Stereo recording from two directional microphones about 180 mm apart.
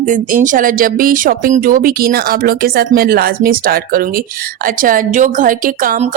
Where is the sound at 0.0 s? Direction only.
45° right (ahead or behind).